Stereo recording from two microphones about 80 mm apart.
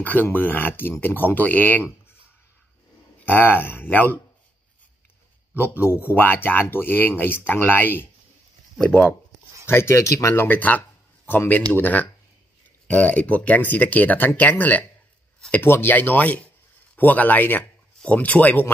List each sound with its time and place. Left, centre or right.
0.0 s speech: left
3.3 s speech: left
5.6 s speech: left
10.4 s speech: left